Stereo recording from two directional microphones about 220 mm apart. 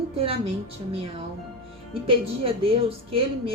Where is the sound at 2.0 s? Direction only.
25° right (ahead or behind).